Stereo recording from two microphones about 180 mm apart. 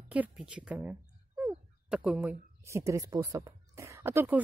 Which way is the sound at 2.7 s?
15° right (ahead or behind).